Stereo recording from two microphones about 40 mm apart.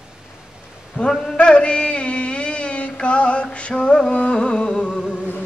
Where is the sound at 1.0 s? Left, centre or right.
Centre.